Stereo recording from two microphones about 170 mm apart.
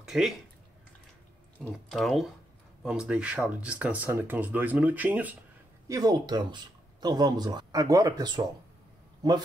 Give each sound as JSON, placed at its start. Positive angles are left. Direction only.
{"t": 0.0, "sound": "a sound", "side_deg": 0}
{"t": 1.6, "sound": "speech", "side_deg": 0}
{"t": 5.9, "sound": "speech", "side_deg": -20}